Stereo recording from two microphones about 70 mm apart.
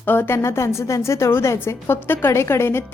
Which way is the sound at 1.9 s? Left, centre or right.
Left.